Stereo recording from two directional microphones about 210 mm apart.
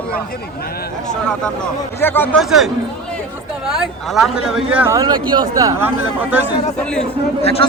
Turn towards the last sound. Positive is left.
turn(degrees=30)  # may be behind; listen again after turning